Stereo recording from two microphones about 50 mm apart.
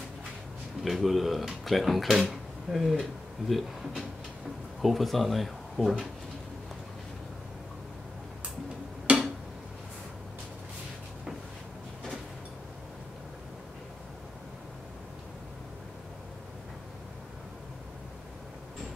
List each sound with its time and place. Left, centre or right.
0.8 s speech: centre